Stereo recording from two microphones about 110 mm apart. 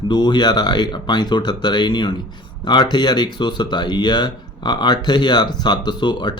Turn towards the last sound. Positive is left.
turn(degrees=45)  # may be behind; listen again after turning